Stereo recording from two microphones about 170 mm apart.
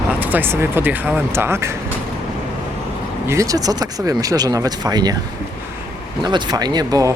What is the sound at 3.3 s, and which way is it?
Speech, 20° right (ahead or behind).